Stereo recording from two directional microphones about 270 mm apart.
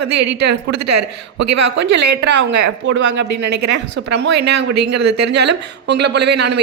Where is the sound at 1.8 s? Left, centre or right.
Right.